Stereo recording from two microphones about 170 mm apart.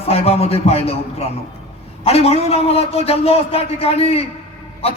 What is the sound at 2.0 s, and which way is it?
A man's voice, 35° left (ahead or behind).